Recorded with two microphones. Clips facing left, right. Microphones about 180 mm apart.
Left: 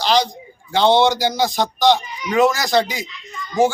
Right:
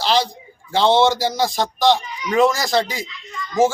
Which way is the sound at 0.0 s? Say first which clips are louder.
Left 1 dB; centre (ahead or behind).